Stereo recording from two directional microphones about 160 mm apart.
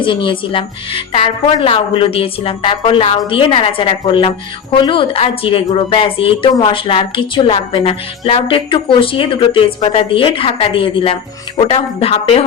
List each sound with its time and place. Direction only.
0.0 s a woman's voice: 30° left (ahead or behind)